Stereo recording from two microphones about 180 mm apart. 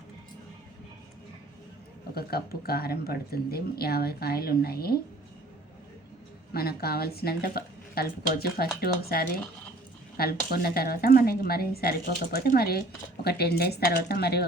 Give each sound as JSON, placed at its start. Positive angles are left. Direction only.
{"t": 2.1, "sound": "speech", "side_deg": 60}
{"t": 6.5, "sound": "speech", "side_deg": 60}